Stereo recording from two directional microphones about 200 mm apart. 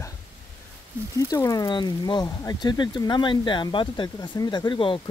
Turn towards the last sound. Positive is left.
turn(degrees=25)  # may be behind; listen again after turning